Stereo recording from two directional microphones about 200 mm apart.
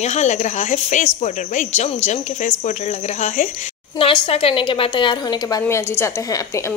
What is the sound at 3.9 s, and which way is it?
A woman's voice, 25° left (ahead or behind).